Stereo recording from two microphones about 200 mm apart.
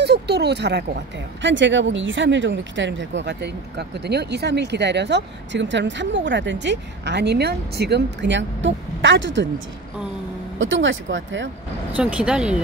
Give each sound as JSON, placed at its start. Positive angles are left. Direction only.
{"t": 0.0, "sound": "speech", "side_deg": -55}
{"t": 10.6, "sound": "speech", "side_deg": -70}
{"t": 12.0, "sound": "speech", "side_deg": -5}